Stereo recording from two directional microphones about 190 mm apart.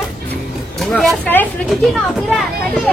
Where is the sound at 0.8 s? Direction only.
Centre (ahead or behind).